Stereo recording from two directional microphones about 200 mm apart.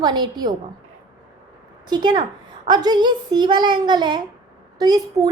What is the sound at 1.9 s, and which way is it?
Speech, 20° right (ahead or behind).